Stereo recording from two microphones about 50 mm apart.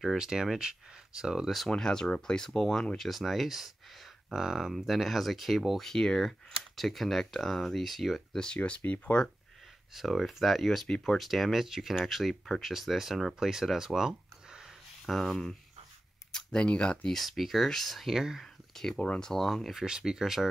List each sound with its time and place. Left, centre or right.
0.2 s speech: centre
1.7 s speech: centre
3.0 s speech: centre
8.5 s speech: left
9.9 s speech: centre
15.0 s speech: centre
17.1 s speech: centre
18.8 s speech: centre
19.8 s speech: centre